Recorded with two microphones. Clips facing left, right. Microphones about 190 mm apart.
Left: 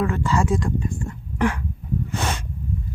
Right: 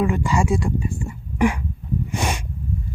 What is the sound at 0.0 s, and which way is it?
Speech, 15° right (ahead or behind).